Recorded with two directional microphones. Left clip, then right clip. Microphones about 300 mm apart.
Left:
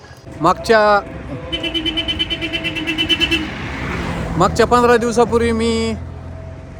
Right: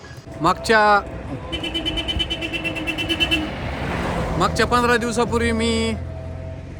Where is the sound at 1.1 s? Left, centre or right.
Right.